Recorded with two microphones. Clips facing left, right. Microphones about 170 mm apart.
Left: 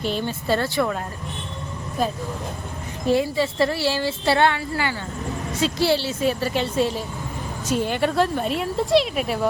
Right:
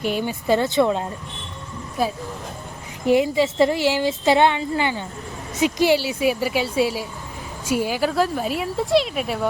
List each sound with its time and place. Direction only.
0.0 s a woman's voice: 15° right (ahead or behind)
3.1 s a woman's voice: 15° right (ahead or behind); by 9.5 s centre (ahead or behind)